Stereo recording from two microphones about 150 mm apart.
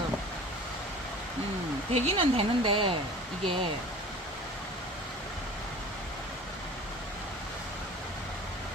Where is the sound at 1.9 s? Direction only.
45° right (ahead or behind).